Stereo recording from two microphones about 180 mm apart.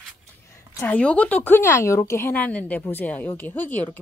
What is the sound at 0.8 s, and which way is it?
Speech, 10° left (ahead or behind).